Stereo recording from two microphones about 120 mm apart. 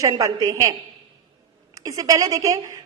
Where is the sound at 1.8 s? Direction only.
30° right (ahead or behind).